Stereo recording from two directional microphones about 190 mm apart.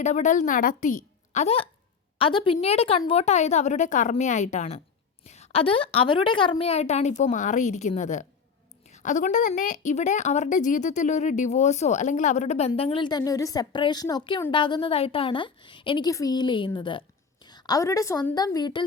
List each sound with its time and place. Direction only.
0.0 s a woman's voice: 40° left (ahead or behind)